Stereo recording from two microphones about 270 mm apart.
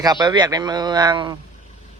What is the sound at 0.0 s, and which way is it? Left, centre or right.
A man's voice, centre.